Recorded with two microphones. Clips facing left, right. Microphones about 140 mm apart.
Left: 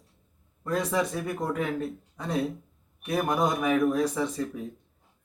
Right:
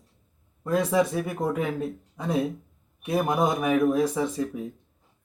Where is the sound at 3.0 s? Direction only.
15° right (ahead or behind).